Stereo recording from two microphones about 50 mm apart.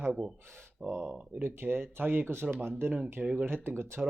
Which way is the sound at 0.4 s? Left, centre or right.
Right.